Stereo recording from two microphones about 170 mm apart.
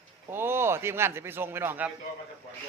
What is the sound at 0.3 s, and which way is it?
A man's voice, 15° right (ahead or behind).